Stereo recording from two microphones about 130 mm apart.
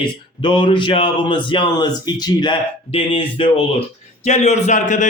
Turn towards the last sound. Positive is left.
turn(degrees=70)  # may be behind; listen again after turning